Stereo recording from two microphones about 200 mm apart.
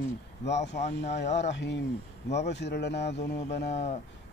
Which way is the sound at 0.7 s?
35° left (ahead or behind).